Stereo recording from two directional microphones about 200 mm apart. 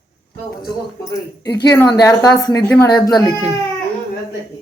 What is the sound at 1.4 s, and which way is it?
Speech, 55° left (ahead or behind).